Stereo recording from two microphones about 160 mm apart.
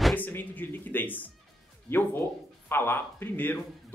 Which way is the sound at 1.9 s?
15° left (ahead or behind).